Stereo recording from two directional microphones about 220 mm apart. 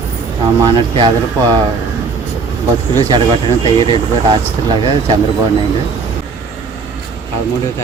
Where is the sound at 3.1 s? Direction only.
20° right (ahead or behind).